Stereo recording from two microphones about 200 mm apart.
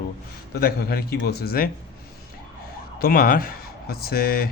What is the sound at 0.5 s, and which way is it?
Speech, 50° left (ahead or behind).